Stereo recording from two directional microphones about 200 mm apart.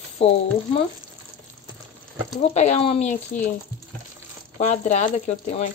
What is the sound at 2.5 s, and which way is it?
Speech, 35° left (ahead or behind).